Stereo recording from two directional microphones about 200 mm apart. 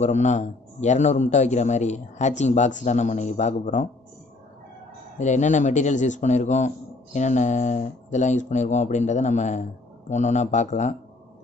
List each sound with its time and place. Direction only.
0.0 s a man's voice: 35° left (ahead or behind)
5.1 s a man's voice: 35° left (ahead or behind)